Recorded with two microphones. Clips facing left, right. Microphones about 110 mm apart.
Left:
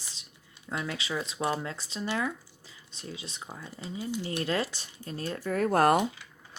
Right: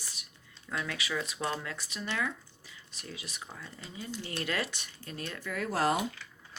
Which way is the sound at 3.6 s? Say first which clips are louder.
Left 9 dB; 15° left (ahead or behind).